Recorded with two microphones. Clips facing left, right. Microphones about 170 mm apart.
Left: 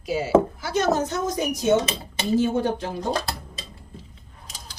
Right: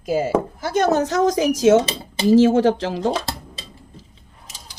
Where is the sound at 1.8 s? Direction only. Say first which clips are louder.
Right 3 dB; 30° right (ahead or behind).